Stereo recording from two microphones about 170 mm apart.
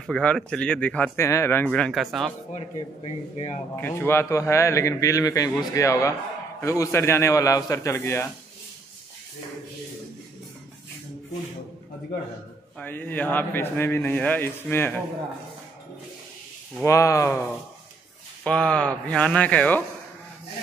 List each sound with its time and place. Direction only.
0.0 s a man's voice: 5° left (ahead or behind)
3.3 s a man's voice: 15° left (ahead or behind)
12.7 s a man's voice: 10° left (ahead or behind)
16.8 s a man's voice: 20° left (ahead or behind)
18.4 s a man's voice: 5° left (ahead or behind)